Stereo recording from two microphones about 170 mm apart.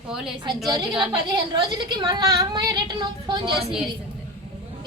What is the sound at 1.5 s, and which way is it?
A woman's voice, 25° right (ahead or behind).